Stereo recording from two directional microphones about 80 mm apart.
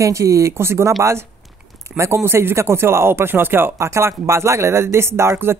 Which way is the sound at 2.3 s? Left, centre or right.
Right.